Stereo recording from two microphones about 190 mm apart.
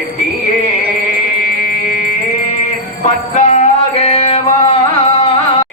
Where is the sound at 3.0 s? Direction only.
35° left (ahead or behind).